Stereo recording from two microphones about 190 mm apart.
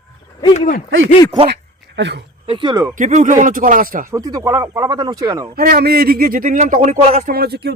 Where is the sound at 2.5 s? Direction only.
25° right (ahead or behind).